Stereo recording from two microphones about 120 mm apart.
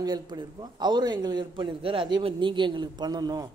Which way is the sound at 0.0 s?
35° right (ahead or behind).